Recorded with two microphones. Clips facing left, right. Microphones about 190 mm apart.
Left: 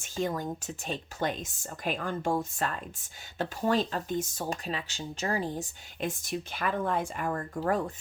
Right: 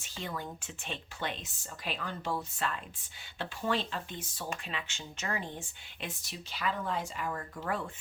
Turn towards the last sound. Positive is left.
turn(degrees=40)  # may be behind; listen again after turning